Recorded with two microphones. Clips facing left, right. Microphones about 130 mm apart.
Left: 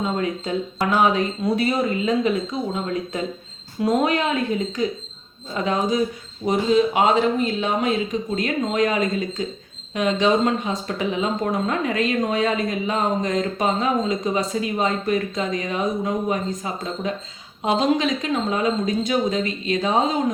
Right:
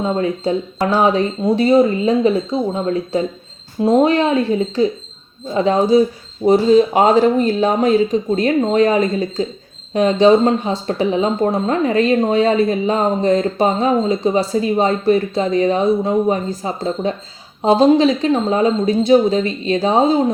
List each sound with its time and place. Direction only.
0.0 s speech: 30° right (ahead or behind)